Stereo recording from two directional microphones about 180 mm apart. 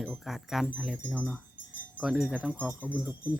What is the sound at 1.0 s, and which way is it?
Speech, 5° left (ahead or behind).